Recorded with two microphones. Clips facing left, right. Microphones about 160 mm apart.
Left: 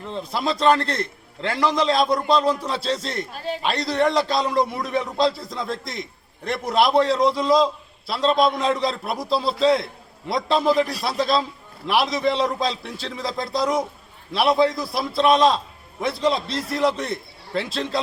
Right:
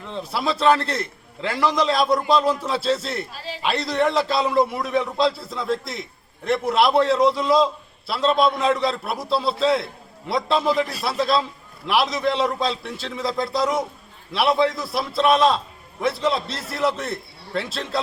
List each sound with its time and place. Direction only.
0.2 s a man's voice: 5° right (ahead or behind)
3.3 s a man's voice: 55° left (ahead or behind)
3.6 s a man's voice: centre (ahead or behind)